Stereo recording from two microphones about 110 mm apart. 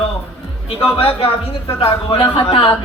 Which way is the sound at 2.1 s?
45° left (ahead or behind).